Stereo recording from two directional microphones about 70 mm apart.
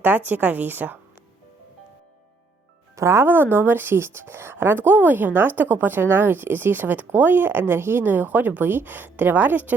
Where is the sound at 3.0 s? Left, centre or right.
Right.